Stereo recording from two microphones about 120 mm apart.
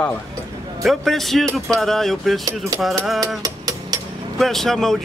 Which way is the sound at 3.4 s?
30° right (ahead or behind).